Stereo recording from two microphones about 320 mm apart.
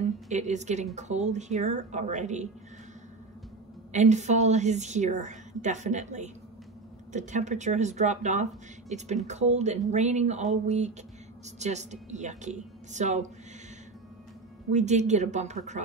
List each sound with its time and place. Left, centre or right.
0.0 s speech: right
3.9 s speech: right
14.7 s speech: right